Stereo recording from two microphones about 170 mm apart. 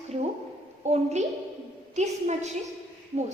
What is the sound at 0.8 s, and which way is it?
A woman's voice, 45° right (ahead or behind).